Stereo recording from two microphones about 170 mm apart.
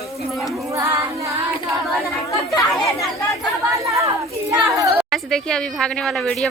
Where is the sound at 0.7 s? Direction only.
15° right (ahead or behind).